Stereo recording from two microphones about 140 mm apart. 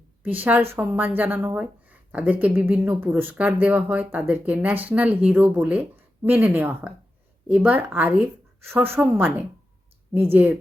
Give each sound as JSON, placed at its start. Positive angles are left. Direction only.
{"t": 0.2, "sound": "speech", "side_deg": -15}